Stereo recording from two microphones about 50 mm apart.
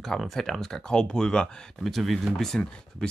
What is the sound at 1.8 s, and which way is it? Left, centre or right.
Speech, centre.